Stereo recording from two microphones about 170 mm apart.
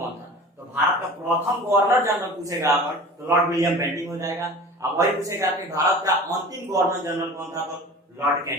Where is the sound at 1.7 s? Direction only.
15° right (ahead or behind).